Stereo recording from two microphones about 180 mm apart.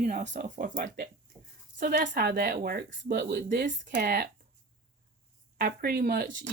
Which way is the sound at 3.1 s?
65° right (ahead or behind).